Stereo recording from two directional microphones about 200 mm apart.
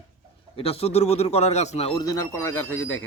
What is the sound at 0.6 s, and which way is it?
A man's voice, 30° left (ahead or behind).